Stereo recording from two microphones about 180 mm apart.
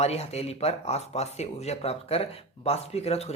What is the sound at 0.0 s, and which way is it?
Speech, 35° left (ahead or behind).